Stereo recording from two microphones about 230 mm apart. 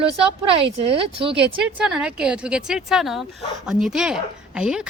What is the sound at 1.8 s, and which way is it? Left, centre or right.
A woman's voice, centre.